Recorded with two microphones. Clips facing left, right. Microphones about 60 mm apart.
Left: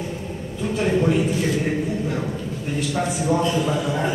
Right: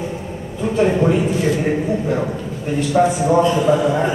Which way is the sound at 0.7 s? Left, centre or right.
Centre.